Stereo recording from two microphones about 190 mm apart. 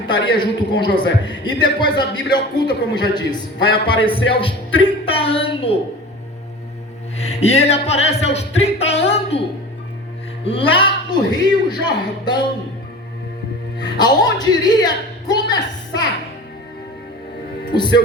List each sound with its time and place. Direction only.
0.1 s a man's voice: 25° left (ahead or behind)
7.2 s music: 35° left (ahead or behind)
10.4 s a man's voice: 30° left (ahead or behind)
13.7 s speech: 20° left (ahead or behind)